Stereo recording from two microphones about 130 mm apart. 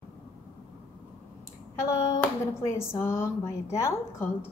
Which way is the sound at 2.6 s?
20° left (ahead or behind).